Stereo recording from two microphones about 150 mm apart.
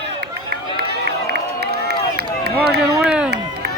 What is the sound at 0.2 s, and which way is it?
Run, 90° right.